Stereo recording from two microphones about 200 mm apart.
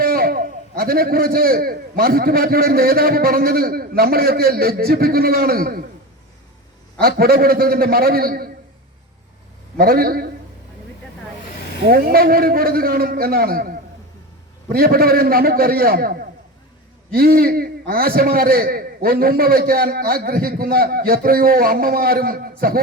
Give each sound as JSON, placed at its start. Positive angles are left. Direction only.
{"t": 0.0, "sound": "a man's voice", "side_deg": -45}
{"t": 7.0, "sound": "a man's voice", "side_deg": -50}
{"t": 9.7, "sound": "a man's voice", "side_deg": -50}
{"t": 11.9, "sound": "a man's voice", "side_deg": -50}